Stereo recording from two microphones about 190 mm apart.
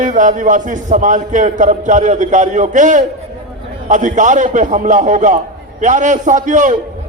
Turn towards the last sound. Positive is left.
turn(degrees=-40)  # may be behind; listen again after turning